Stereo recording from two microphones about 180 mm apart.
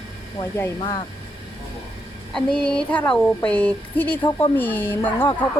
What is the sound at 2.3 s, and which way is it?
Speech, 5° left (ahead or behind).